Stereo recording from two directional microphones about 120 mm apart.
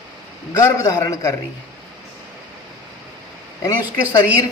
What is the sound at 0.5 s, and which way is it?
Speech, 25° left (ahead or behind).